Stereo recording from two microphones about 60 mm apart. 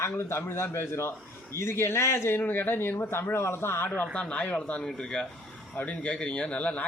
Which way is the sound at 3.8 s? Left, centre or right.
Left.